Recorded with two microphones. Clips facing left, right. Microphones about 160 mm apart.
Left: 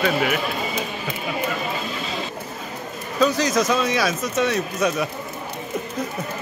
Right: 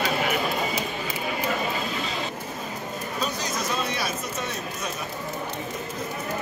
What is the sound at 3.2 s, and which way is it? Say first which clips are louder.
Speech: left 12 dB; 90° left.